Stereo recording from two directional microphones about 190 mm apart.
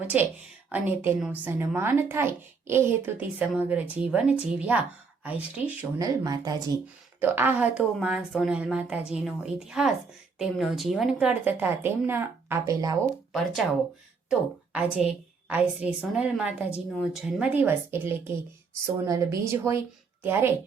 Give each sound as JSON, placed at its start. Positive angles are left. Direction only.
{"t": 0.1, "sound": "a woman's voice", "side_deg": -5}
{"t": 6.0, "sound": "a woman's voice", "side_deg": -20}
{"t": 14.3, "sound": "a woman's voice", "side_deg": -5}